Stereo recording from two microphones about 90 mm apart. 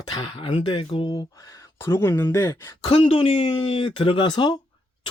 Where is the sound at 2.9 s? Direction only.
90° left.